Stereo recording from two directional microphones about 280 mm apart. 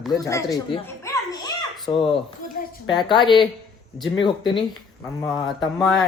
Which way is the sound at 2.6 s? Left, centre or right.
Left.